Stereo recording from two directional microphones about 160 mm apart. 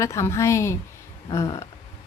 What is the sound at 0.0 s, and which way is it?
A woman's voice, 20° left (ahead or behind).